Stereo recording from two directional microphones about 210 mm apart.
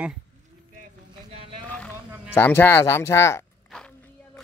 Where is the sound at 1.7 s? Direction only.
10° left (ahead or behind).